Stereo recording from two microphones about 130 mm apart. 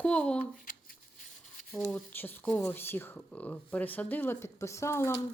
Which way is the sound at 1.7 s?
5° left (ahead or behind).